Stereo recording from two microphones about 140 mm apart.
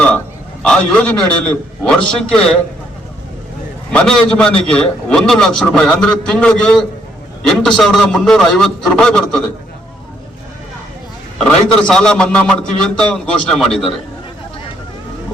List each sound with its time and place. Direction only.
0.6 s a man's voice: 5° left (ahead or behind)
3.9 s a man's voice: 5° left (ahead or behind)
11.3 s a man's voice: 5° left (ahead or behind)